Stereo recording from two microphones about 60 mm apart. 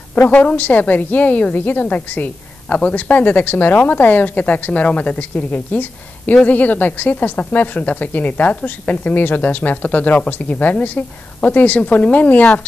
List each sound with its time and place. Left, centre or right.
0.3 s a woman's voice: left